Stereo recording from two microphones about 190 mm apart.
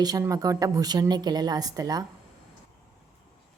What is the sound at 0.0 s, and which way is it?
A woman's voice, 20° right (ahead or behind).